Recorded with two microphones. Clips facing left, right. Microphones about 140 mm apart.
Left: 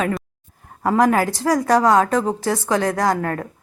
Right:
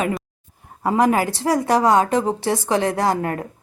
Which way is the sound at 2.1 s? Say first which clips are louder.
Even; 10° right (ahead or behind).